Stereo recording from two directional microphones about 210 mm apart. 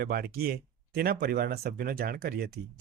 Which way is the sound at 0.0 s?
45° right (ahead or behind).